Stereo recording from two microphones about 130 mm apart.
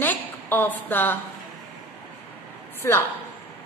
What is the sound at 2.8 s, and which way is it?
Speech, 20° left (ahead or behind).